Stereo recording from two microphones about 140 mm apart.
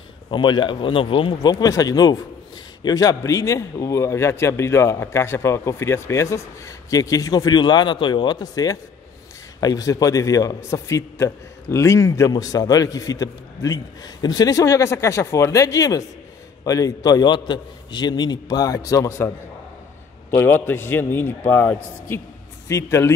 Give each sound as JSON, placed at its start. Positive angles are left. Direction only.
{"t": 0.3, "sound": "a man's voice", "side_deg": 30}